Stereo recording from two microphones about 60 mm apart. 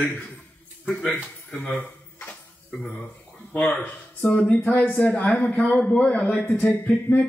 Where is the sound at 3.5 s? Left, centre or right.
Centre.